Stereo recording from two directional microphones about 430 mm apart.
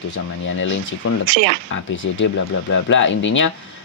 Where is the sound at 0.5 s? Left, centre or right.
Left.